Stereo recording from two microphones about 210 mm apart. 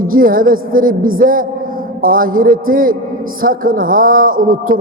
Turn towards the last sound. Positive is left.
turn(degrees=-40)  # may be behind; listen again after turning